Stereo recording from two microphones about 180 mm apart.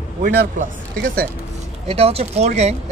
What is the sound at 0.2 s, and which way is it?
Speech, 50° right (ahead or behind).